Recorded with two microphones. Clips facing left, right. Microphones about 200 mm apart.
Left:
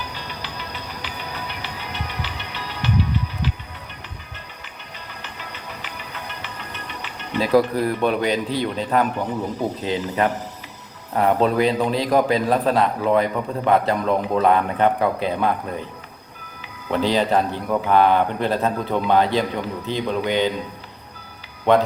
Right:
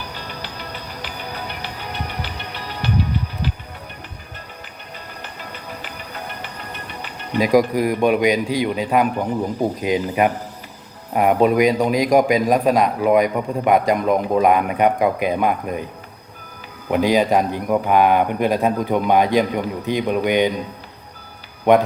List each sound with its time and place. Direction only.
1.0 s music: 45° right (ahead or behind)
5.2 s music: 45° right (ahead or behind)
7.3 s a man's voice: 15° right (ahead or behind)
16.9 s a man's voice: 10° right (ahead or behind)
21.7 s a man's voice: 15° right (ahead or behind)